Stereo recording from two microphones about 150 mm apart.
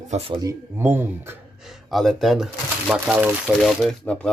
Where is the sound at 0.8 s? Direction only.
15° right (ahead or behind).